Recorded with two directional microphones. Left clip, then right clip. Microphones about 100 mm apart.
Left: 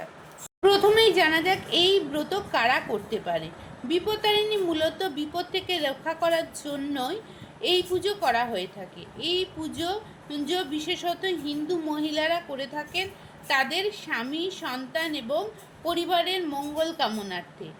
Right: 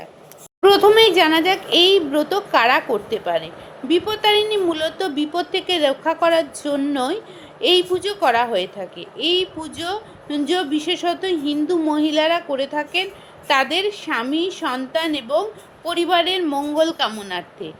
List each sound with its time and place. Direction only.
0.6 s speech: 50° right (ahead or behind)